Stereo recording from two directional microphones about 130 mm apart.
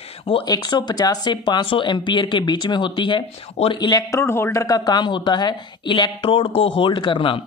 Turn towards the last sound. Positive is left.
turn(degrees=40)  # may be behind; listen again after turning